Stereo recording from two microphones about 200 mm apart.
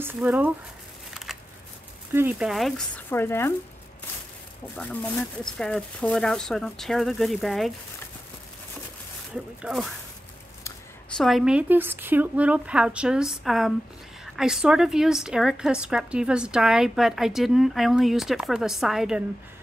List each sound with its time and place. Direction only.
0.0 s speech: 10° right (ahead or behind)
1.1 s a sound: centre (ahead or behind)
2.1 s a woman's voice: 5° right (ahead or behind)
3.1 s speech: 10° left (ahead or behind)
4.7 s a woman's voice: 5° left (ahead or behind)
9.3 s a woman's voice: 5° right (ahead or behind)